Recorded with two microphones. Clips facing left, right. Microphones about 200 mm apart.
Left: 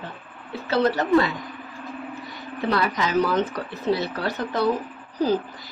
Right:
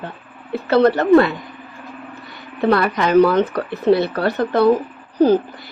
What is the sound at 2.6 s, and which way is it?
Speech, 60° right (ahead or behind).